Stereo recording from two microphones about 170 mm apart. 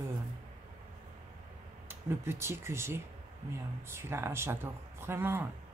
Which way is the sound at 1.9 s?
15° right (ahead or behind).